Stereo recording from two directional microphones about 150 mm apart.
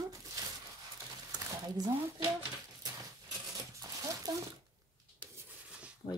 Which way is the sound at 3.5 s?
20° right (ahead or behind).